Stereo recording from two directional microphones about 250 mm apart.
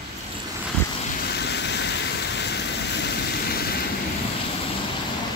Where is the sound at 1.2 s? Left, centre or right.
Left.